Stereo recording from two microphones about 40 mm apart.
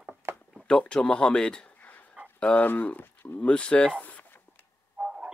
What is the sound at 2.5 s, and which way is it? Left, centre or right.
Speech, left.